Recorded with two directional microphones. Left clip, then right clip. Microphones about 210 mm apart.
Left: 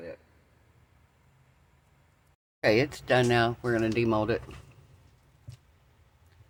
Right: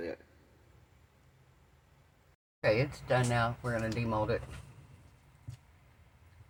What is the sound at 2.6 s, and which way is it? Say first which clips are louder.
Speech: left 5 dB; 55° left (ahead or behind).